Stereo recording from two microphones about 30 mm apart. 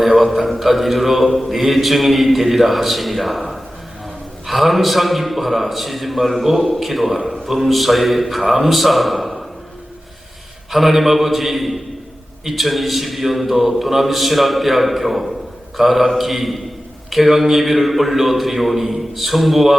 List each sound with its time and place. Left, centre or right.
0.0 s a man's voice: centre
4.4 s a man's voice: centre
10.7 s a man's voice: centre